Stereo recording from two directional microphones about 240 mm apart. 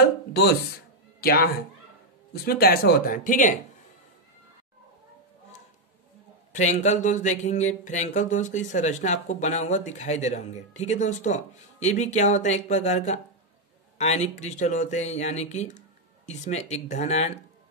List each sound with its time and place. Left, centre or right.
1.2 s a man's voice: left
6.5 s speech: left